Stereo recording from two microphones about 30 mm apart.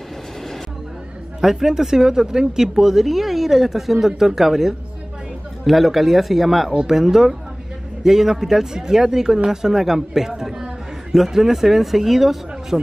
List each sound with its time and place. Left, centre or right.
1.4 s speech: centre
5.7 s speech: centre
6.9 s speech: centre